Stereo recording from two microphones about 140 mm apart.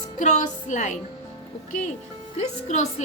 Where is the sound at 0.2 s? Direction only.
60° left (ahead or behind).